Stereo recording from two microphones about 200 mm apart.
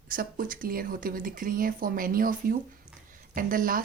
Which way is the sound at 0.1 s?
45° right (ahead or behind).